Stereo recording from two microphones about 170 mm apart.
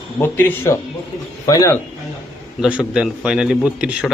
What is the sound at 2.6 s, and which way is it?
A man's voice, 5° right (ahead or behind).